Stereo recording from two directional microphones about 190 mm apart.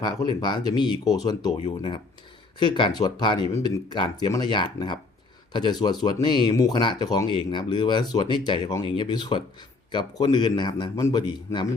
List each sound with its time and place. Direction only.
0.0 s speech: 25° left (ahead or behind)